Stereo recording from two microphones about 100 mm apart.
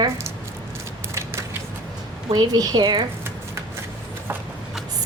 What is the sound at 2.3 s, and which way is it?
Speech, 45° right (ahead or behind).